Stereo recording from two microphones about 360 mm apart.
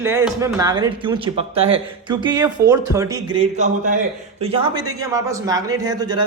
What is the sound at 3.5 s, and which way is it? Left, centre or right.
Speech, right.